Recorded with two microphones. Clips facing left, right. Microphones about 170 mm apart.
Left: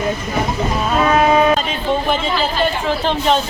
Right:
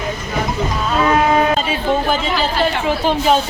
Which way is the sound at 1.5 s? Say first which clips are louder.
Right 1 dB; 5° right (ahead or behind).